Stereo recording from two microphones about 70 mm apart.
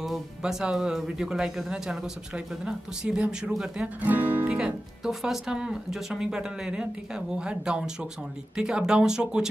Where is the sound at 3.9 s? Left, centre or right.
Right.